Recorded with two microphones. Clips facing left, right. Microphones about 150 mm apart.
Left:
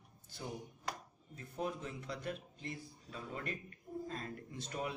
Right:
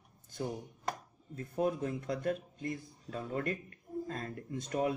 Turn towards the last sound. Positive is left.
turn(degrees=-45)  # may be behind; listen again after turning